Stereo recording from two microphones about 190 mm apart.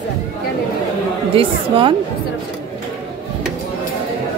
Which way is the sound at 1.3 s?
30° right (ahead or behind).